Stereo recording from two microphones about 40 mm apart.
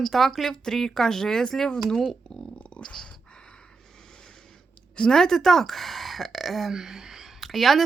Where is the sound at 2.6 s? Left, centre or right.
Left.